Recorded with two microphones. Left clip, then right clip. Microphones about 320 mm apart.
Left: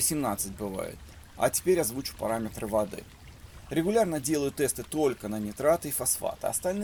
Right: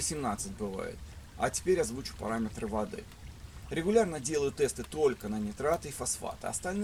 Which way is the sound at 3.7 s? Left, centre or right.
Left.